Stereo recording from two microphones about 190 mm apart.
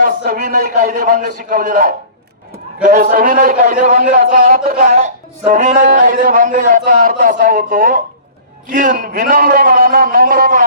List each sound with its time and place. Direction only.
0.0 s a man's voice: 45° right (ahead or behind)